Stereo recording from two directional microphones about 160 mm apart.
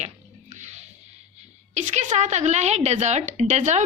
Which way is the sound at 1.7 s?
50° right (ahead or behind).